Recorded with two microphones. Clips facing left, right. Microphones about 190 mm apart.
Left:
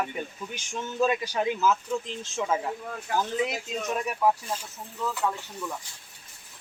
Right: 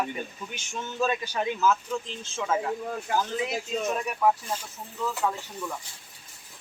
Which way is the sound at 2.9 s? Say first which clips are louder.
Right 1 dB; 30° right (ahead or behind).